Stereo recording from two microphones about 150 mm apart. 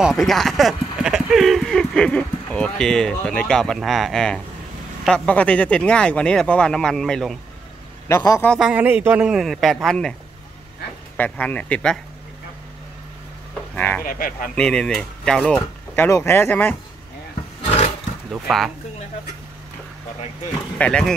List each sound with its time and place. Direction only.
0.0 s speech: centre (ahead or behind)
8.1 s a man's voice: 20° left (ahead or behind)
8.5 s speech: 5° right (ahead or behind)
11.1 s speech: 10° left (ahead or behind)
13.7 s speech: 10° left (ahead or behind)
14.0 s speech: 70° left (ahead or behind)
14.5 s speech: 5° left (ahead or behind)
16.1 s speech: 15° left (ahead or behind)
17.6 s roaring cats: 40° left (ahead or behind)
18.3 s speech: centre (ahead or behind)
20.7 s speech: 5° left (ahead or behind)